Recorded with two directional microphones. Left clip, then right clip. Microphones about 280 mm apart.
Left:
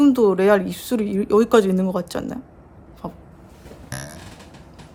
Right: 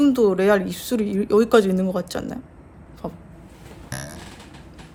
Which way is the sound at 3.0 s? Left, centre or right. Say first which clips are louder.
Right 1 dB; centre.